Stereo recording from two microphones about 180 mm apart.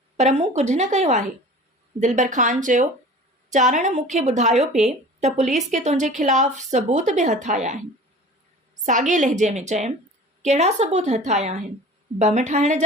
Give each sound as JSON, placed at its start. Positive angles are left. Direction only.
{"t": 0.2, "sound": "a woman's voice", "side_deg": -40}